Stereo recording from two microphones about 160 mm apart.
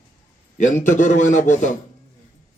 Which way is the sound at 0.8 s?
50° left (ahead or behind).